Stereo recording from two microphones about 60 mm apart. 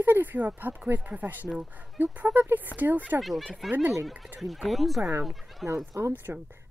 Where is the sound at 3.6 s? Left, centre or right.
Centre.